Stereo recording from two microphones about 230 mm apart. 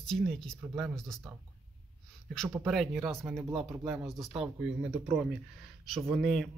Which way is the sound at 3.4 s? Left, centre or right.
Centre.